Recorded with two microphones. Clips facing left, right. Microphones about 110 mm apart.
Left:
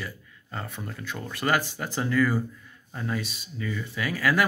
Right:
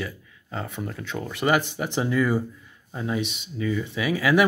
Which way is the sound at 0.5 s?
15° right (ahead or behind).